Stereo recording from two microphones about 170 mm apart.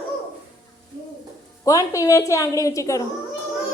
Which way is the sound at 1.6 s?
20° left (ahead or behind).